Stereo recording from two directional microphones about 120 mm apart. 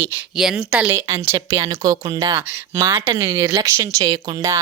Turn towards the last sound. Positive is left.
turn(degrees=-30)  # may be behind; listen again after turning